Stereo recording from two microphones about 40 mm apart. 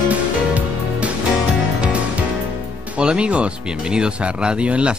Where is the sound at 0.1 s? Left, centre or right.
Right.